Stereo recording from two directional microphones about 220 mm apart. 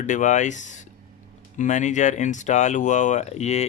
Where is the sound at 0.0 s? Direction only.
35° left (ahead or behind).